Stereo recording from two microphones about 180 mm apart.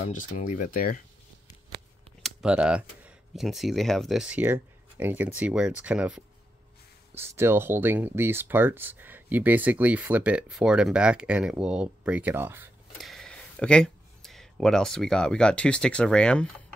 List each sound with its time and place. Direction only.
0.1 s speech: 45° left (ahead or behind)
2.2 s speech: 5° right (ahead or behind)
12.9 s speech: centre (ahead or behind)